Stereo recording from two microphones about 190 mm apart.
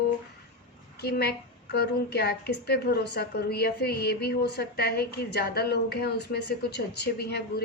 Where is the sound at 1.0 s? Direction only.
55° left (ahead or behind).